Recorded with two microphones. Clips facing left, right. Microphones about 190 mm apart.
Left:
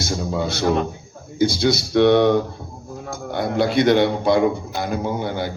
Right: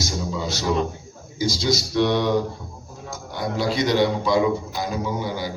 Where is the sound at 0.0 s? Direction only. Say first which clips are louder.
Left 4 dB; 60° left (ahead or behind).